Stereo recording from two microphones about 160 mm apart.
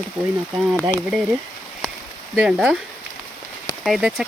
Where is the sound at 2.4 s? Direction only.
5° right (ahead or behind).